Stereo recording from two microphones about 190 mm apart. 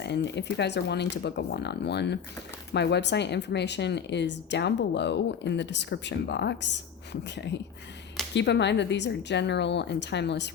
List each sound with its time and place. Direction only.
0.0 s speech: 65° left (ahead or behind)